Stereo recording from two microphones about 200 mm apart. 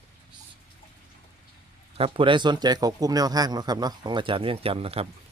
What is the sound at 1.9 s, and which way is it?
Speech, 25° right (ahead or behind).